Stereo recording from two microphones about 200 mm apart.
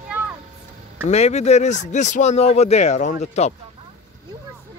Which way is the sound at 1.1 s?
35° left (ahead or behind).